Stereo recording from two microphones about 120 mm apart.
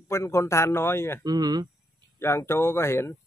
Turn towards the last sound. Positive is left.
turn(degrees=20)  # may be behind; listen again after turning